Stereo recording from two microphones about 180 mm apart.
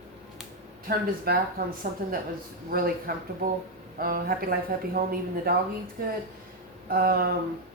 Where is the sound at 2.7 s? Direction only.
55° right (ahead or behind).